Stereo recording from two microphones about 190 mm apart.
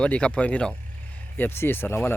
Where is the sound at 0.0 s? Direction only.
5° left (ahead or behind).